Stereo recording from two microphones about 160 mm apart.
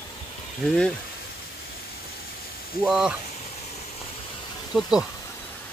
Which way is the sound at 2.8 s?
5° right (ahead or behind).